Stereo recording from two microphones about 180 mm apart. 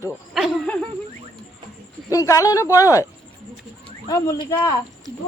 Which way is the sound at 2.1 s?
20° left (ahead or behind).